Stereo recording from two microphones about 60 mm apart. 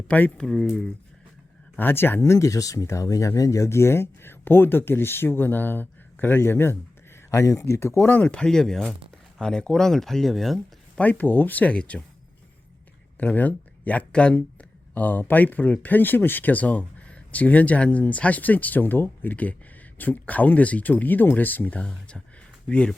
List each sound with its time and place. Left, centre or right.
0.3 s speech: centre
1.8 s speech: left
7.3 s speech: left
7.8 s speech: left
8.0 s speech: left
8.3 s speech: centre
10.9 s speech: left
13.1 s speech: left
21.8 s speech: centre